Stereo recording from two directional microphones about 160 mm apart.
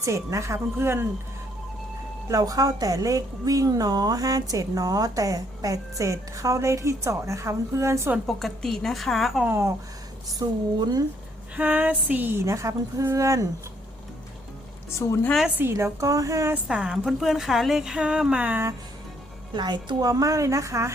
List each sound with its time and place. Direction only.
0.0 s a woman's voice: 20° right (ahead or behind)
2.2 s a woman's voice: 20° right (ahead or behind)
8.3 s a woman's voice: centre (ahead or behind)
9.5 s a woman's voice: 15° right (ahead or behind)
11.5 s a woman's voice: 10° right (ahead or behind)
14.9 s a woman's voice: 20° left (ahead or behind)
15.3 s a woman's voice: centre (ahead or behind)
15.5 s a woman's voice: 15° right (ahead or behind)
16.6 s a woman's voice: 5° right (ahead or behind)
19.5 s a woman's voice: 25° right (ahead or behind)